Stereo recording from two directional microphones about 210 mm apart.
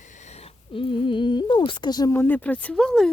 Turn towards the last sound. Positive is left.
turn(degrees=5)  # may be behind; listen again after turning